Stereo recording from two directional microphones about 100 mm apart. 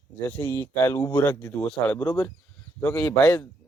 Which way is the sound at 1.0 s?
35° left (ahead or behind).